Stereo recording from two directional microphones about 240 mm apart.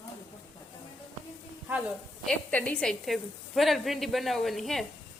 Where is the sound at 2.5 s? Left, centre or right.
Centre.